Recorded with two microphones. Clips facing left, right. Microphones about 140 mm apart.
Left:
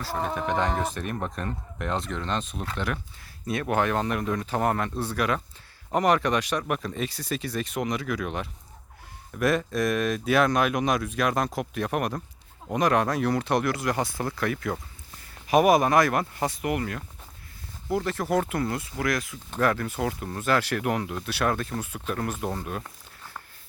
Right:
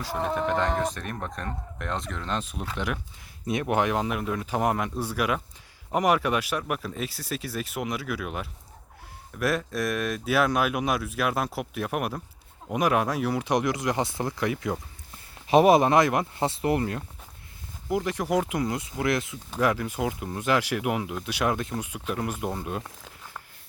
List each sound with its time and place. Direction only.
0.2 s speech: centre (ahead or behind); by 17.0 s 30° right (ahead or behind)
17.8 s speech: 15° right (ahead or behind)
19.5 s speech: 10° right (ahead or behind)